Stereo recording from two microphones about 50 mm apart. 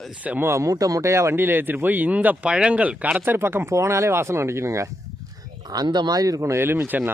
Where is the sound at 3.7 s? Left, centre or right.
Right.